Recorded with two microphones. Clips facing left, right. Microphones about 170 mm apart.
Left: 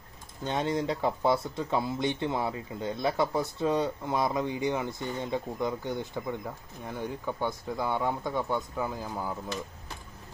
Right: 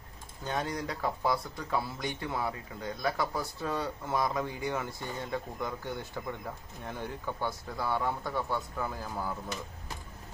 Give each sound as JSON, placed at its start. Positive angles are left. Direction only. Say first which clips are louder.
{"t": 0.4, "sound": "speech", "louder": "left 5 dB", "side_deg": 25}